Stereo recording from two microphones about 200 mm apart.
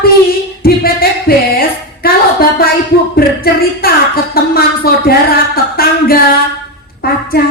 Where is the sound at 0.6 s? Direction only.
50° left (ahead or behind).